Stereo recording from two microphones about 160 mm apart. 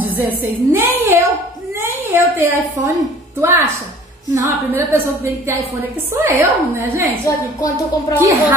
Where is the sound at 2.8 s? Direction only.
20° right (ahead or behind).